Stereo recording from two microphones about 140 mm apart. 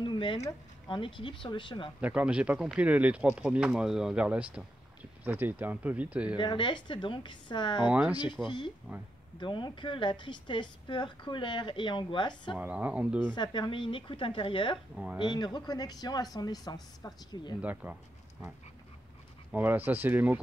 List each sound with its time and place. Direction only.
0.0 s a sound: 35° left (ahead or behind)
0.8 s a woman's voice: 35° left (ahead or behind)
2.0 s speech: 10° right (ahead or behind)
6.3 s a woman's voice: 35° left (ahead or behind)
7.9 s speech: 10° right (ahead or behind)
8.5 s a woman's voice: 35° left (ahead or behind)
12.5 s speech: 10° right (ahead or behind)
13.3 s a woman's voice: 35° left (ahead or behind)
17.6 s speech: 10° right (ahead or behind)
19.5 s speech: 15° right (ahead or behind)